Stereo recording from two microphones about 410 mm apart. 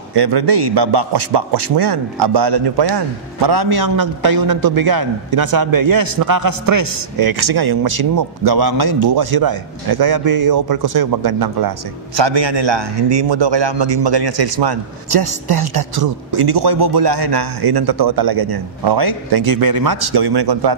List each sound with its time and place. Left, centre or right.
0.1 s a man's voice: right
3.4 s a man's voice: right
12.2 s a man's voice: right